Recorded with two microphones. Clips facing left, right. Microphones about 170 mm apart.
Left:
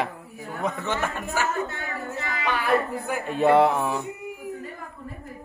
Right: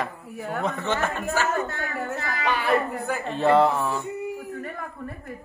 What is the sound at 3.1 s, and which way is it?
A man's voice, 10° left (ahead or behind).